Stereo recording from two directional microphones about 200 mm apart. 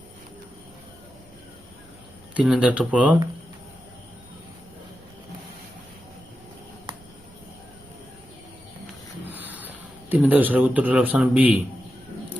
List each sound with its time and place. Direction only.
2.3 s speech: 5° right (ahead or behind)
6.9 s a sound: 20° right (ahead or behind)
9.3 s speech: 10° right (ahead or behind)